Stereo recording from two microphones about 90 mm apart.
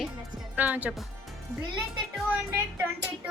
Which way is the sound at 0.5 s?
20° right (ahead or behind).